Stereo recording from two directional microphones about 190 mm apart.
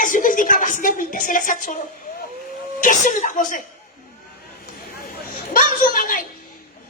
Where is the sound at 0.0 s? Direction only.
45° left (ahead or behind).